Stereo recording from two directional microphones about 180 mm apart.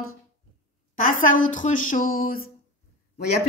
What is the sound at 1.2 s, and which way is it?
Speech, 45° left (ahead or behind).